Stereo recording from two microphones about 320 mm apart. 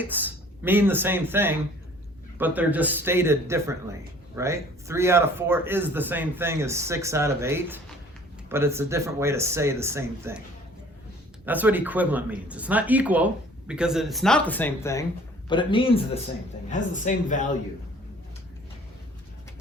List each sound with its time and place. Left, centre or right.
0.0 s speech: centre
11.4 s a man's voice: centre; by 17.5 s left